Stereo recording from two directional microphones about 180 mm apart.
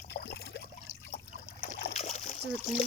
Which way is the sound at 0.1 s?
65° left (ahead or behind).